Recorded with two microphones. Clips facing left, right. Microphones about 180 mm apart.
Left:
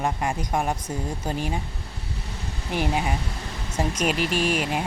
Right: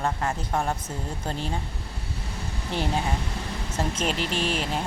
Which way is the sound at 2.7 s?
15° left (ahead or behind).